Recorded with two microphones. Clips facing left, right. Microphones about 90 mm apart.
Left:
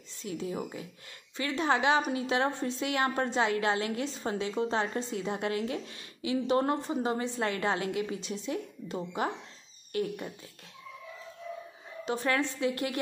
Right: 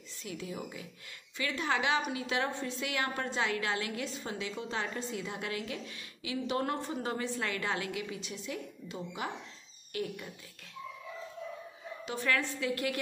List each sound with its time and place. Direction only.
0.2 s a woman's voice: 35° left (ahead or behind)
12.1 s a woman's voice: 30° left (ahead or behind)